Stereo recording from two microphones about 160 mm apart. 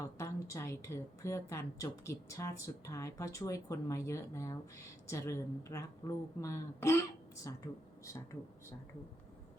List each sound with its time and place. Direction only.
0.0 s a woman's voice: 20° left (ahead or behind)